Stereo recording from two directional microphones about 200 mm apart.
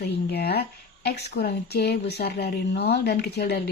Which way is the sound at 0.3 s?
55° left (ahead or behind).